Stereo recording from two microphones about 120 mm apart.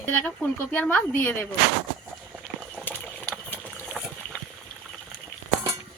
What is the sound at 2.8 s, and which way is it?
Boiling, 10° left (ahead or behind).